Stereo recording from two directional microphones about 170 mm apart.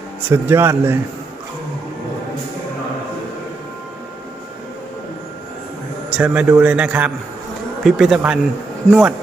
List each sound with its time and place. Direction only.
0.3 s a man's voice: 15° right (ahead or behind)
6.1 s a man's voice: 5° right (ahead or behind)